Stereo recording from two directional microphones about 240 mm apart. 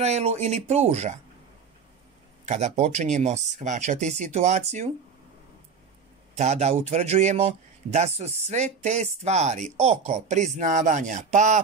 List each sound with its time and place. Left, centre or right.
0.0 s a man's voice: right
2.4 s a man's voice: right
6.3 s a man's voice: right